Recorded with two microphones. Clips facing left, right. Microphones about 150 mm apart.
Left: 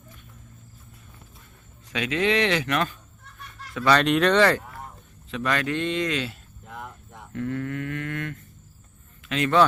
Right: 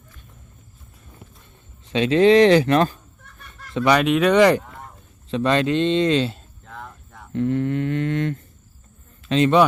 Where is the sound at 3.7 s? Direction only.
15° right (ahead or behind).